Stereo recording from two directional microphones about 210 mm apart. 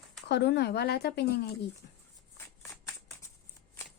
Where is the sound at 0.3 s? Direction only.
55° left (ahead or behind).